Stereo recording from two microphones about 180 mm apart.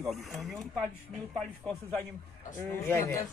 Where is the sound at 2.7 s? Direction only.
15° left (ahead or behind).